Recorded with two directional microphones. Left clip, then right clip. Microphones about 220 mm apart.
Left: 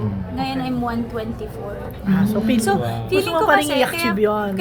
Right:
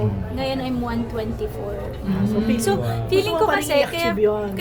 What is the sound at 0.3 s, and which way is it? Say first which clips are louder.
A woman's voice: left 1 dB; 15° right (ahead or behind).